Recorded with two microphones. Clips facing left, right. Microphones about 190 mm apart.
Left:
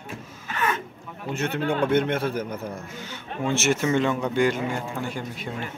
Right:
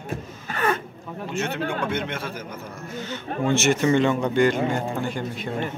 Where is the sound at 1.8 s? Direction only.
50° left (ahead or behind).